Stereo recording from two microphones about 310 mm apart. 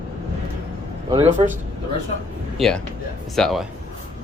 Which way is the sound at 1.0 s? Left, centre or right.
Centre.